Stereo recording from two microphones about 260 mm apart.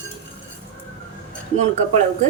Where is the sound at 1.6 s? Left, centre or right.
Right.